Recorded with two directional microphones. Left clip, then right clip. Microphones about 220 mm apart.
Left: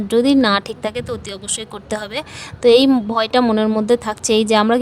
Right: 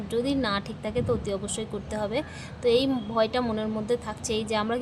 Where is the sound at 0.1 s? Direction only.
50° left (ahead or behind).